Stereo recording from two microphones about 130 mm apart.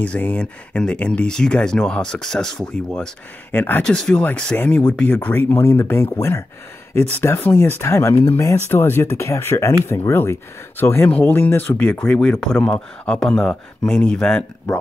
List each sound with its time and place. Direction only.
0.0 s speech: 10° left (ahead or behind)